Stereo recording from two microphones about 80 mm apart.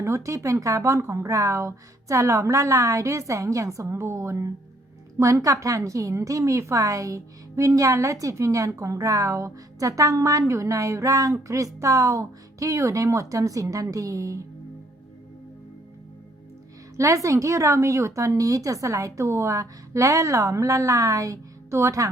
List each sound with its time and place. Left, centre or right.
0.0 s a woman's voice: right
17.2 s a woman's voice: right